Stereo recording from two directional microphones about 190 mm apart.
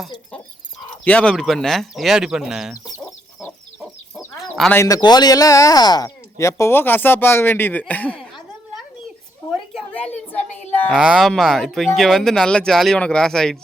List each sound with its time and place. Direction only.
1.0 s speech: 5° left (ahead or behind)
4.4 s chicken: centre (ahead or behind)
4.7 s speech: 15° left (ahead or behind)
9.5 s a sound: 5° left (ahead or behind)
10.1 s a sound: 35° left (ahead or behind)
10.8 s speech: 5° right (ahead or behind)